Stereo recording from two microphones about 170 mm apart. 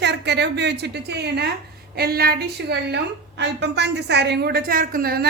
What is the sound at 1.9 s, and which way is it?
A woman's voice, 65° right (ahead or behind).